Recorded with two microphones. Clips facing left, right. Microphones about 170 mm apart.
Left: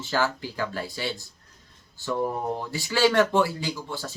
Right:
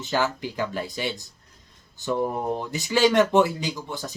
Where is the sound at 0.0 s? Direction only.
20° right (ahead or behind).